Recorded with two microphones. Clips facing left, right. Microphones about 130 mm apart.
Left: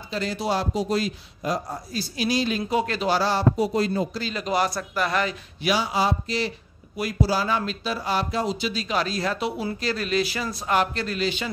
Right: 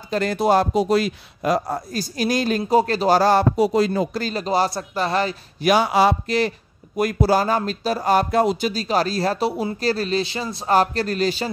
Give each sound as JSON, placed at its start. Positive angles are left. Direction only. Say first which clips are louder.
{"t": 0.1, "sound": "a man's voice", "louder": "right 8 dB", "side_deg": -50}
{"t": 2.0, "sound": "speech", "louder": "right 2 dB", "side_deg": -45}
{"t": 3.5, "sound": "speech", "louder": "right 5 dB", "side_deg": -90}
{"t": 4.1, "sound": "speech", "louder": "right 4 dB", "side_deg": -45}
{"t": 5.7, "sound": "a man's voice", "louder": "right 6 dB", "side_deg": -60}